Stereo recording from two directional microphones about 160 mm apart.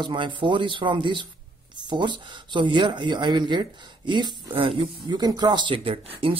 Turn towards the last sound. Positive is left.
turn(degrees=-35)  # may be behind; listen again after turning